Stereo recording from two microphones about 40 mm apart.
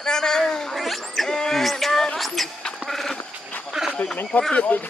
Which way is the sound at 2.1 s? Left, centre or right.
Centre.